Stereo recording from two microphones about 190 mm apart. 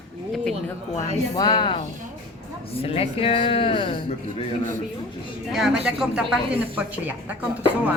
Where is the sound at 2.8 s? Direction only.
30° left (ahead or behind).